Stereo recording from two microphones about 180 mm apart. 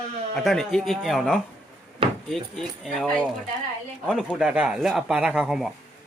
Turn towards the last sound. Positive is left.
turn(degrees=0)  # may be behind; listen again after turning